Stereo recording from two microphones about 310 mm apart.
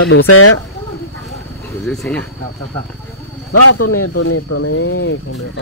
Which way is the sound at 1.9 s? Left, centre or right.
Centre.